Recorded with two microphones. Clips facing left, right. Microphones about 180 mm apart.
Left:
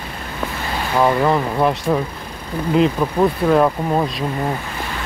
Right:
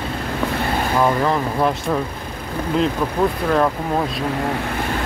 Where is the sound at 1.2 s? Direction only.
5° left (ahead or behind).